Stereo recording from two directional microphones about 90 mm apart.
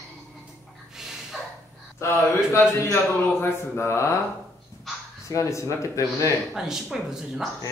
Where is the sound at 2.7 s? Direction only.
30° left (ahead or behind).